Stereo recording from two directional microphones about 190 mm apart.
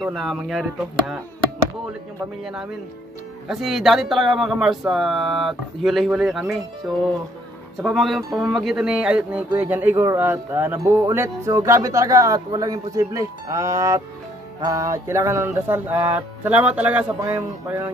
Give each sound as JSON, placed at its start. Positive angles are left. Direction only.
{"t": 0.0, "sound": "speech", "side_deg": 0}
{"t": 2.4, "sound": "speech", "side_deg": -5}